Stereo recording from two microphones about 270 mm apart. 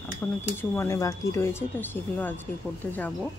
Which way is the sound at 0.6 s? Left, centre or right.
Centre.